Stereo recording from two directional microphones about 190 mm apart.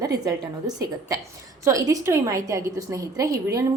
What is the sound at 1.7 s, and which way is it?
A woman's voice, 15° right (ahead or behind).